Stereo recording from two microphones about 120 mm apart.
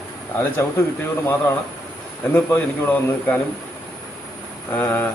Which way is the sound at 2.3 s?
15° left (ahead or behind).